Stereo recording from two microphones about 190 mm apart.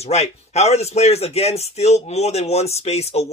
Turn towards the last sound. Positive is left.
turn(degrees=35)  # may be behind; listen again after turning